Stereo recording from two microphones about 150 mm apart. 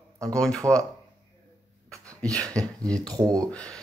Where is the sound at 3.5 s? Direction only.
5° left (ahead or behind).